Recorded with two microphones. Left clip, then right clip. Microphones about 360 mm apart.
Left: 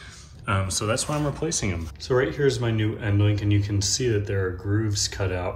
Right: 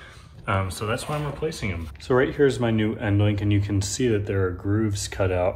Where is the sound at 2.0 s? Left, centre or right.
Centre.